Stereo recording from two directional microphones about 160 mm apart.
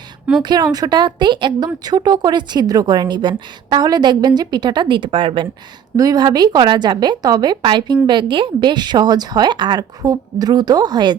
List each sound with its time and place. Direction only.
0.4 s a woman's voice: 25° right (ahead or behind)